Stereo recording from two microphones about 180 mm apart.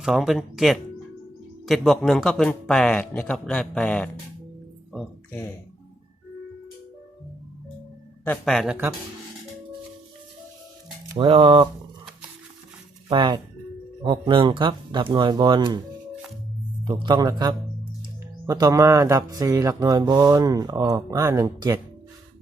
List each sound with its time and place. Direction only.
0.0 s speech: centre (ahead or behind)
8.2 s speech: 5° left (ahead or behind)
11.2 s speech: 30° right (ahead or behind)
13.1 s speech: 25° right (ahead or behind)
16.8 s speech: 25° right (ahead or behind)